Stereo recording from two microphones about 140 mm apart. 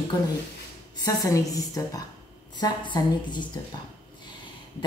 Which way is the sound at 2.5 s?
30° left (ahead or behind).